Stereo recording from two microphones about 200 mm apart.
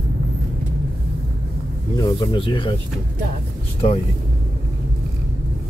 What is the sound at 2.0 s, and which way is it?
Speech, 20° left (ahead or behind).